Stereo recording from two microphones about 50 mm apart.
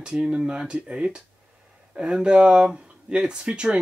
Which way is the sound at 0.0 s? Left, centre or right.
Right.